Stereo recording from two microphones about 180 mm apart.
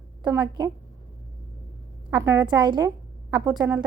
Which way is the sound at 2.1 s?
20° right (ahead or behind).